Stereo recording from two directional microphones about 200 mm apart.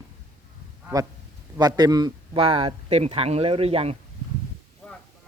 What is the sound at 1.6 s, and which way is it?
Speech, 20° right (ahead or behind).